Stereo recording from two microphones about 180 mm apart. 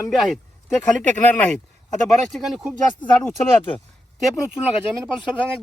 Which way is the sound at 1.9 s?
Centre (ahead or behind).